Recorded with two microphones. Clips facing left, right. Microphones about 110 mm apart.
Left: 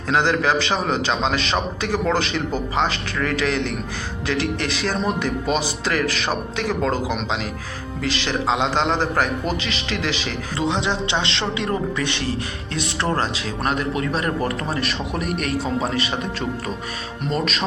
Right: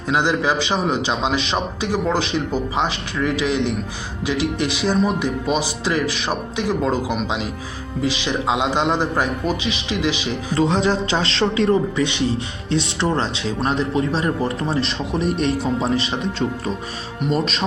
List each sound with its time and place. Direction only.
0.1 s a man's voice: 15° right (ahead or behind)
10.6 s speech: 40° right (ahead or behind)
11.7 s a man's voice: 20° right (ahead or behind)